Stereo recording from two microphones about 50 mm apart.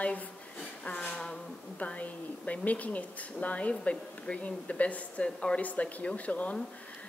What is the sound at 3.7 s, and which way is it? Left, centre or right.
Speech, centre.